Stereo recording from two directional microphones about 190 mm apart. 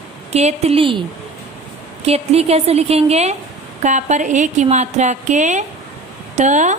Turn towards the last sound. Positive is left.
turn(degrees=-40)  # may be behind; listen again after turning